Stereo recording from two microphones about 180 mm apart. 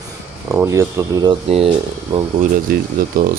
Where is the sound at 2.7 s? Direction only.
55° right (ahead or behind).